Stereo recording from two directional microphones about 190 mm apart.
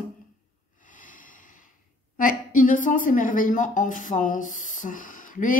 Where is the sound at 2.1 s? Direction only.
45° left (ahead or behind).